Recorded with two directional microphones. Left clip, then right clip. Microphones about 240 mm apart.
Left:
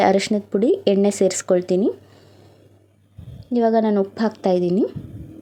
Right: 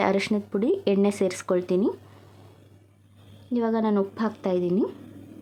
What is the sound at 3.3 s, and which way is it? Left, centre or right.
A woman's voice, centre.